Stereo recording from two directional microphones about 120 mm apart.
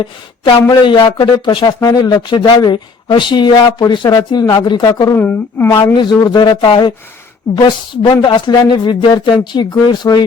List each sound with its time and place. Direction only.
0.7 s speech: 40° left (ahead or behind)
5.1 s a woman's voice: 15° left (ahead or behind)
5.6 s speech: 35° left (ahead or behind)